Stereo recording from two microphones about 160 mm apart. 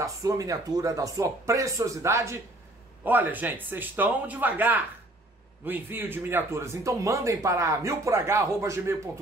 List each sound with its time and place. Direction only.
0.0 s speech: 20° right (ahead or behind)